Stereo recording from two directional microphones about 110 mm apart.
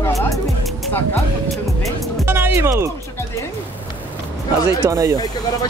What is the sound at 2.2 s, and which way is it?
Music, 20° right (ahead or behind).